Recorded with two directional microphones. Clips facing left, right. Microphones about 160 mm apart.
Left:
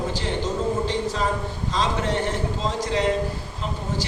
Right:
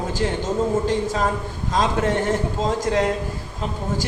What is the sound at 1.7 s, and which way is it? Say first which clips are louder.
A woman's voice: right 4 dB; 50° right (ahead or behind).